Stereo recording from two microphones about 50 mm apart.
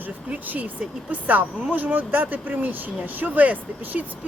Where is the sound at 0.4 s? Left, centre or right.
Right.